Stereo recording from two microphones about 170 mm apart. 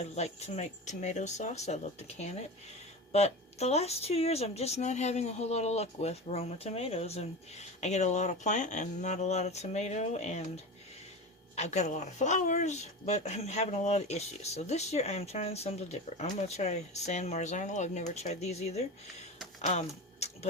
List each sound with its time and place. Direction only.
0.0 s speech: 40° left (ahead or behind)
11.5 s speech: 40° left (ahead or behind)